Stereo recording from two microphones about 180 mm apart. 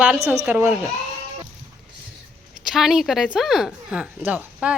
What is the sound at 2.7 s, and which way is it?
Speech, centre (ahead or behind).